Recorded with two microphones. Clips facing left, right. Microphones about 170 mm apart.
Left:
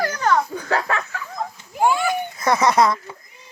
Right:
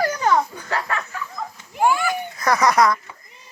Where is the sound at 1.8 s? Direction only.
20° left (ahead or behind).